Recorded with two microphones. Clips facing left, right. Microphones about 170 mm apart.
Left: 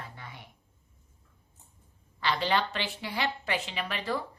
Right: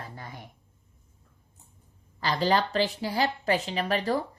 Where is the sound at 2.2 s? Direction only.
40° right (ahead or behind).